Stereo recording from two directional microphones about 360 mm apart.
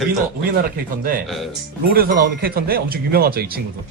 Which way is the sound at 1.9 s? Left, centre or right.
Right.